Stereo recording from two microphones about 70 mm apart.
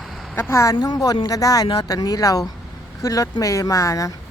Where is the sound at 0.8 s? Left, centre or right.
Left.